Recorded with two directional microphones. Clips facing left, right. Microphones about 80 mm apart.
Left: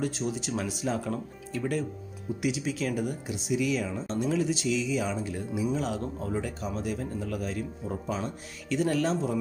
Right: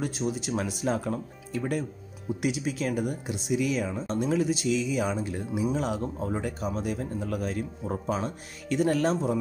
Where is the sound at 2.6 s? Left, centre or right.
Right.